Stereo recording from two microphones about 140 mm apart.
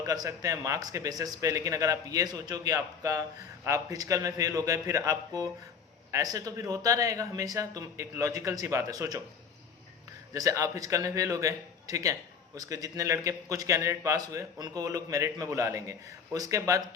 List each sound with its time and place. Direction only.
0.0 s a man's voice: 25° right (ahead or behind)
10.3 s a man's voice: 25° right (ahead or behind)